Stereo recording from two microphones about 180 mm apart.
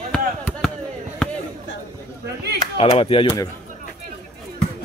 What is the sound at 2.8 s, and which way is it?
Speech, 30° left (ahead or behind).